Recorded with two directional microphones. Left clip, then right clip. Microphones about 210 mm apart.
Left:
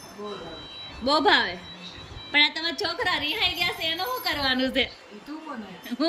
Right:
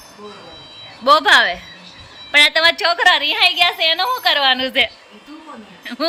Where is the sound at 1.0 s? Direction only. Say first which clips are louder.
Right 10 dB; 5° left (ahead or behind).